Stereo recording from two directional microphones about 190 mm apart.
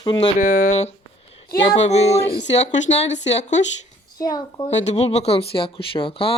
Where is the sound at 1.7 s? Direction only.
35° left (ahead or behind).